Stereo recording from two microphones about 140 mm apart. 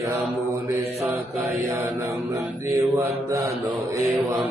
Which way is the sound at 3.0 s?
20° right (ahead or behind).